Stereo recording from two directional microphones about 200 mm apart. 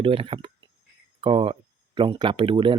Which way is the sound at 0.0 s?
25° right (ahead or behind).